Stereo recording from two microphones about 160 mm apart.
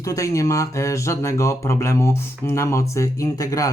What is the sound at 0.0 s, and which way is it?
Speech, 20° left (ahead or behind).